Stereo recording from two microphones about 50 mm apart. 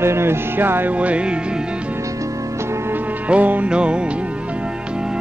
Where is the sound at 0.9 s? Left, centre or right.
Right.